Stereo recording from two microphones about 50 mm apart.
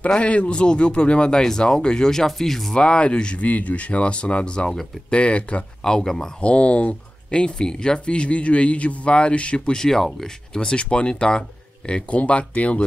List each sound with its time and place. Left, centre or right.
0.0 s speech: left; by 2.7 s centre
2.7 s speech: left
5.9 s speech: centre
6.4 s speech: left